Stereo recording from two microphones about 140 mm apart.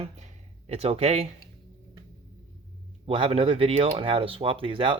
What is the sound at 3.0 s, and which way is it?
Speech, 40° right (ahead or behind).